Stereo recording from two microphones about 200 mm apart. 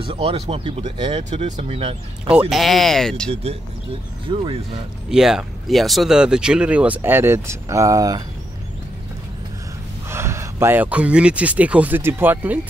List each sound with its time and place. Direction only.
0.1 s speech: 30° right (ahead or behind)
2.5 s speech: centre (ahead or behind)
4.3 s speech: 25° right (ahead or behind)
5.1 s speech: centre (ahead or behind)
10.0 s speech: 15° right (ahead or behind)